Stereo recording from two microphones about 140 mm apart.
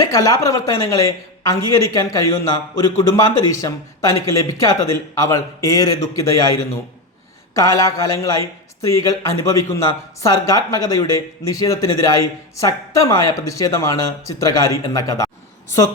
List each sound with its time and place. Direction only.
0.1 s speech: 25° left (ahead or behind)